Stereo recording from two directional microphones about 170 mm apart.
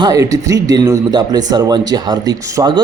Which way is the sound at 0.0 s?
20° right (ahead or behind).